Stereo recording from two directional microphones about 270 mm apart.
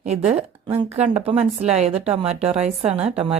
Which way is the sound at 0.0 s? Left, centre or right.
Right.